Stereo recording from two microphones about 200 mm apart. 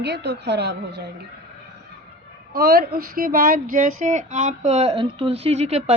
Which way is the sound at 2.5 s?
50° right (ahead or behind).